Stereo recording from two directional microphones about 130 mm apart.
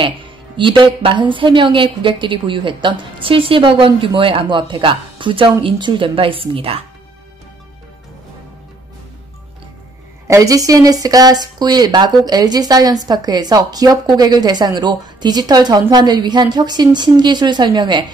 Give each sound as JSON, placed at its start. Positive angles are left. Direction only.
{"t": 0.0, "sound": "speech", "side_deg": -40}
{"t": 10.2, "sound": "speech", "side_deg": -25}